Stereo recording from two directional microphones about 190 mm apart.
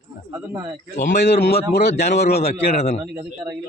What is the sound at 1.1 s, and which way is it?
A man's voice, 60° left (ahead or behind).